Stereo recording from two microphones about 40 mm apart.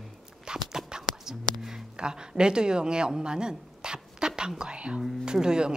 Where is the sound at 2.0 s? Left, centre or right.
Right.